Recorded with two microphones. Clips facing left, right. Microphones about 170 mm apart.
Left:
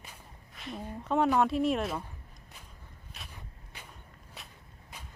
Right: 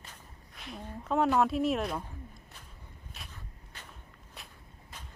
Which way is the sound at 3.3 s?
10° left (ahead or behind).